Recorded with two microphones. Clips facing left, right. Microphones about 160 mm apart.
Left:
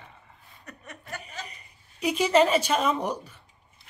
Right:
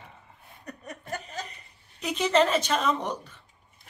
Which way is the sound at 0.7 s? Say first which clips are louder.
Right 4 dB; 40° right (ahead or behind).